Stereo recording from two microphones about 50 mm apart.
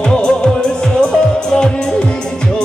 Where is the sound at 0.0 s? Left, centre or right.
Centre.